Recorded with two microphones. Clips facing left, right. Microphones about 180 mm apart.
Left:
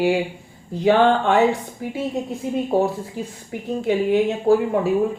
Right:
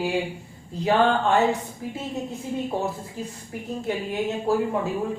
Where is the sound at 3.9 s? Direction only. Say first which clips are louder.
Left 9 dB; 70° left (ahead or behind).